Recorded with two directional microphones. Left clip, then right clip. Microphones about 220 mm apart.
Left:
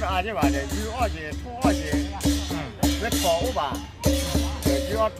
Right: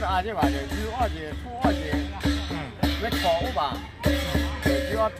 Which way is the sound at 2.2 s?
20° right (ahead or behind).